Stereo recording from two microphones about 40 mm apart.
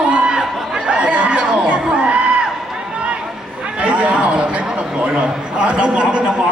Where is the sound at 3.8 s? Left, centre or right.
Right.